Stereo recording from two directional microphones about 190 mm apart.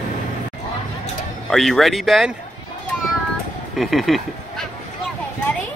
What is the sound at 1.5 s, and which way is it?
Speech, centre (ahead or behind).